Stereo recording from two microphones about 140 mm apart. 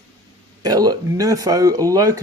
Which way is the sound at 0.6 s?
25° right (ahead or behind).